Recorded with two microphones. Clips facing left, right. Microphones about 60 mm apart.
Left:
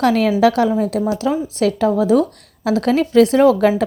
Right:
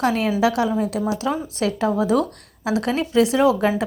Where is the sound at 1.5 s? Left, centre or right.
Right.